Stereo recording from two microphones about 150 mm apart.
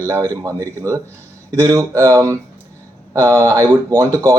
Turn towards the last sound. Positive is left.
turn(degrees=-20)  # may be behind; listen again after turning